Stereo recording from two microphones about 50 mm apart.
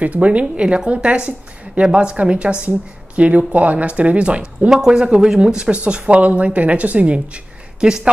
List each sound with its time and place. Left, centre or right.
0.0 s speech: right